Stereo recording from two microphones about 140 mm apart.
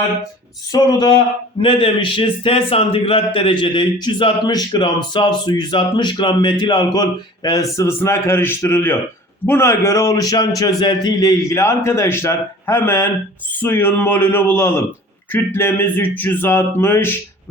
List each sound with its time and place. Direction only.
0.7 s a man's voice: 30° left (ahead or behind)